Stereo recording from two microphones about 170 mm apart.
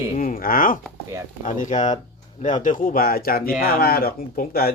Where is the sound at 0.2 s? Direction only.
55° left (ahead or behind).